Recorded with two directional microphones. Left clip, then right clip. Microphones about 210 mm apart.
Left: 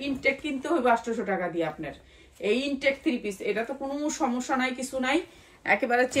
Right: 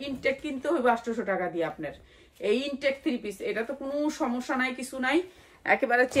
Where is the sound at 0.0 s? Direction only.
15° right (ahead or behind).